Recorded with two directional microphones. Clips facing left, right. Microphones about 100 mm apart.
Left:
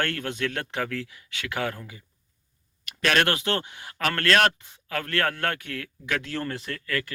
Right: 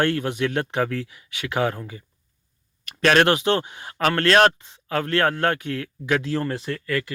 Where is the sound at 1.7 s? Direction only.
35° right (ahead or behind).